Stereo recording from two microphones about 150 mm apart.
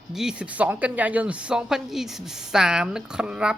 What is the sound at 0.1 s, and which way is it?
Speech, 5° right (ahead or behind).